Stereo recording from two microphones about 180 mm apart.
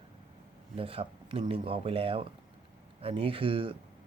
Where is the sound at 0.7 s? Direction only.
30° right (ahead or behind).